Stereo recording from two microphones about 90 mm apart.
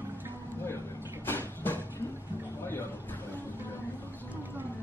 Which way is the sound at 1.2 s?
25° left (ahead or behind).